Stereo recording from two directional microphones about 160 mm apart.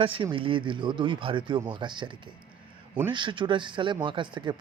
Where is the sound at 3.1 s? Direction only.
30° right (ahead or behind).